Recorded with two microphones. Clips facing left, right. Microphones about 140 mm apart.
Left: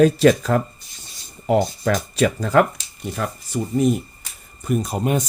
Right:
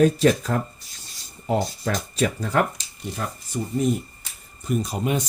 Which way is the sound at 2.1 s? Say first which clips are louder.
Left 5 dB; 90° left.